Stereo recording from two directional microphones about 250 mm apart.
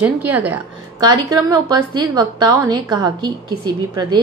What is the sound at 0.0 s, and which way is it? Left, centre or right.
A woman's voice, centre.